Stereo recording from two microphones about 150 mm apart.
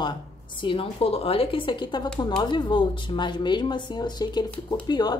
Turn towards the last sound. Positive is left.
turn(degrees=30)  # may be behind; listen again after turning